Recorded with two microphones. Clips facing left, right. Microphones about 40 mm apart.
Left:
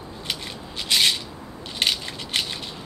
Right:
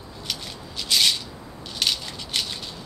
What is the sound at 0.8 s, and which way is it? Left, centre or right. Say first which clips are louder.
Rub: left 1 dB; left.